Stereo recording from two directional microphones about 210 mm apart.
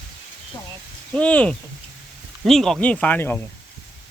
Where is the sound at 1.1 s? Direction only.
5° left (ahead or behind).